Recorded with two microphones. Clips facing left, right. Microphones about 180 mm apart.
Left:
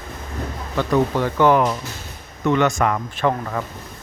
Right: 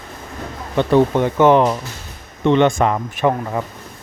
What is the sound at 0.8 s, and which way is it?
Speech, 25° right (ahead or behind).